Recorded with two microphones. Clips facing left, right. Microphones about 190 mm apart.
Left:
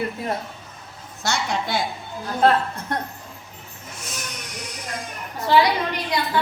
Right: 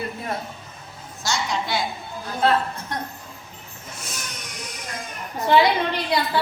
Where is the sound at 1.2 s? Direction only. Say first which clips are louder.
Left 1 dB; 55° left (ahead or behind).